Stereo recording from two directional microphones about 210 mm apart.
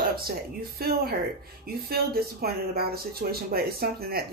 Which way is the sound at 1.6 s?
45° right (ahead or behind).